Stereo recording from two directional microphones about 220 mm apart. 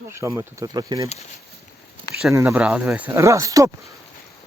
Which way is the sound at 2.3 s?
10° right (ahead or behind).